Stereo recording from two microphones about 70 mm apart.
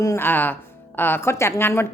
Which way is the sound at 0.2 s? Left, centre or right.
Left.